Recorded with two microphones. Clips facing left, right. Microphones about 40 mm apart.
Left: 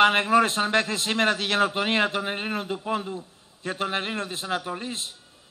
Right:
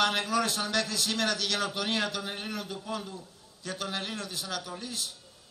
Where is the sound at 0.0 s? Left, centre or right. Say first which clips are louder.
Left 9 dB; left.